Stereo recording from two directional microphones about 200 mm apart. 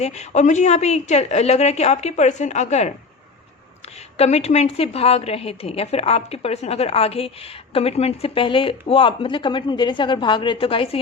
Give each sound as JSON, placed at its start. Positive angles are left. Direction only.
{"t": 0.0, "sound": "a woman's voice", "side_deg": 35}
{"t": 4.2, "sound": "a woman's voice", "side_deg": 30}